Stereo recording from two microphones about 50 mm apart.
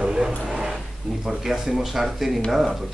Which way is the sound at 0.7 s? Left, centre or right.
Centre.